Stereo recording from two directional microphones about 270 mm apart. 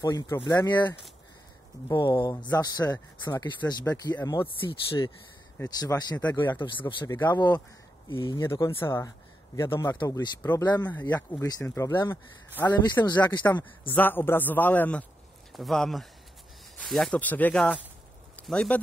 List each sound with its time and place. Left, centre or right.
0.0 s speech: centre